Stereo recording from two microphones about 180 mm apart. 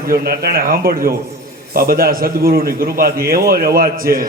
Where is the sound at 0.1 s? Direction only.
55° right (ahead or behind).